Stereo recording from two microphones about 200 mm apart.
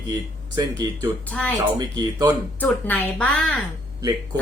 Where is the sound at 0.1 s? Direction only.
20° right (ahead or behind).